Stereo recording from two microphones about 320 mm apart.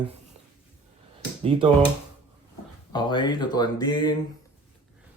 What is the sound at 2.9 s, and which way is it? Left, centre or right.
Speech, centre.